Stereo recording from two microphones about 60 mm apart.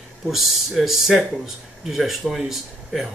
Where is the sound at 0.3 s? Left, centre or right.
Centre.